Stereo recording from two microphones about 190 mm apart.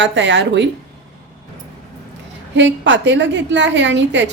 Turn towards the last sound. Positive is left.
turn(degrees=-70)  # may be behind; listen again after turning